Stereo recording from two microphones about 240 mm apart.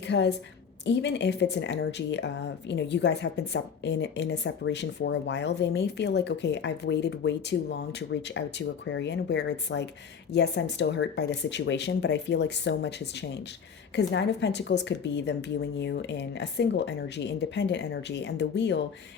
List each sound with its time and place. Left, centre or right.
0.1 s speech: left
13.9 s speech: left